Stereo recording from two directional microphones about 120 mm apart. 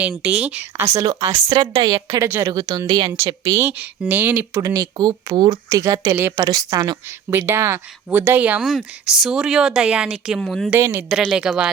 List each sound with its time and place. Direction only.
0.2 s speech: 10° right (ahead or behind)
0.9 s speech: 25° right (ahead or behind)
1.5 s speech: 35° right (ahead or behind)
2.2 s speech: 20° right (ahead or behind)
2.5 s speech: 35° right (ahead or behind)
3.1 s speech: 25° right (ahead or behind)
4.5 s speech: 30° right (ahead or behind)
7.3 s speech: 20° right (ahead or behind); by 10.7 s centre (ahead or behind)
10.8 s speech: 20° right (ahead or behind)
11.3 s speech: 5° right (ahead or behind)